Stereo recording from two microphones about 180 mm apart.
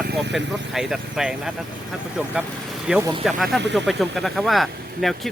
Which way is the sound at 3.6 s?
75° right (ahead or behind).